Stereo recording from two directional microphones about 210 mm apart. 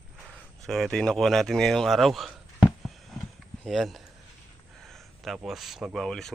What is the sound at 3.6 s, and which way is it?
Speech, centre (ahead or behind).